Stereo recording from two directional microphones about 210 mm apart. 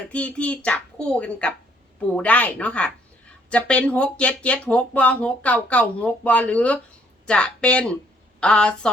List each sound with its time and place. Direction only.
0.1 s speech: 5° left (ahead or behind)